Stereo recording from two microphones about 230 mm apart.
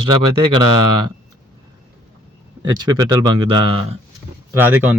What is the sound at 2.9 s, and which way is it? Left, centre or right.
Speech, centre.